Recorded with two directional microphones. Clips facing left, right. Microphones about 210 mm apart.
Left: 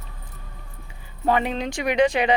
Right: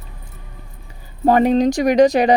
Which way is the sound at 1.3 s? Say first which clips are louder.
Right 9 dB; 40° right (ahead or behind).